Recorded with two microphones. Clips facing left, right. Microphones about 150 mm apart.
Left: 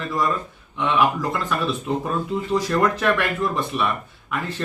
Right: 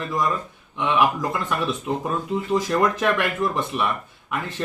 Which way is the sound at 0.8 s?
15° right (ahead or behind).